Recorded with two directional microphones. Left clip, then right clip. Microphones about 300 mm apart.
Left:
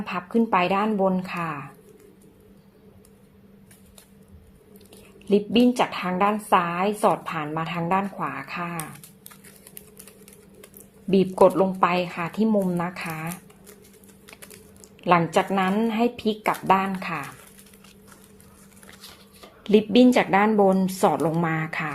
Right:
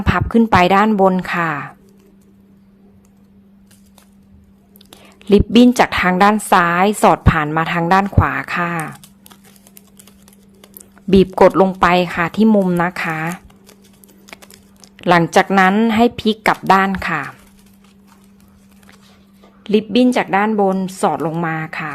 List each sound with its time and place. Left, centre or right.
0.0 s a woman's voice: right
4.9 s whispering: right
5.5 s a woman's voice: right
11.1 s a woman's voice: right
14.3 s typing: centre
15.0 s a woman's voice: right
19.6 s a woman's voice: centre